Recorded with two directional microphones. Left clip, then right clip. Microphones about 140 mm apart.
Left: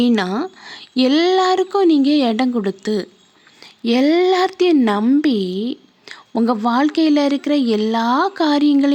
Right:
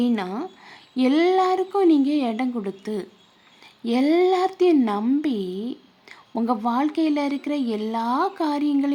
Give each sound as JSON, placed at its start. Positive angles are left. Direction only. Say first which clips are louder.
{"t": 0.0, "sound": "a woman's voice", "louder": "left 7 dB", "side_deg": 35}